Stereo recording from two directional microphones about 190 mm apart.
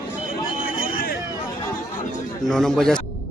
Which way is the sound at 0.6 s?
50° left (ahead or behind).